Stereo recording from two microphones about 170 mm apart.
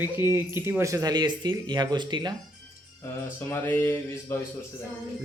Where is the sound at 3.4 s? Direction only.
10° left (ahead or behind).